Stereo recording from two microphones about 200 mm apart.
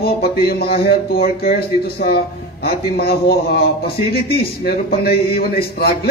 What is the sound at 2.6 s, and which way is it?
A man's voice, 50° left (ahead or behind).